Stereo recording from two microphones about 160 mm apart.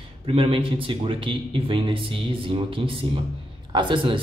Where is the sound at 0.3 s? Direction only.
35° right (ahead or behind).